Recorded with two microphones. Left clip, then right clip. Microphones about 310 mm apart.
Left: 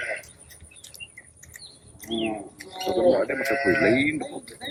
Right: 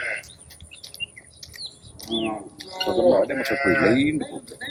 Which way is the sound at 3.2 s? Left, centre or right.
Right.